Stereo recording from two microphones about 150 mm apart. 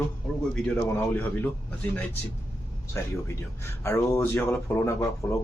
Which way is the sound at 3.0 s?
20° left (ahead or behind).